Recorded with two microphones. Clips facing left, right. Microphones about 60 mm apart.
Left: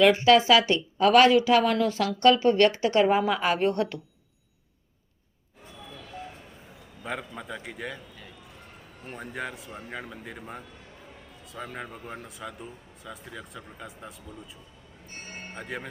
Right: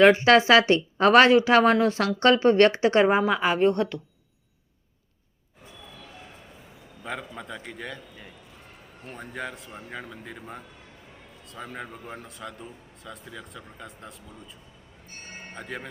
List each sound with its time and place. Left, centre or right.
0.0 s speech: right
3.2 s speech: centre
7.0 s speech: centre
9.1 s speech: centre
15.5 s speech: centre